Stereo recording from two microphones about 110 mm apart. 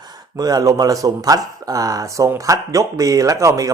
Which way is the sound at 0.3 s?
35° right (ahead or behind).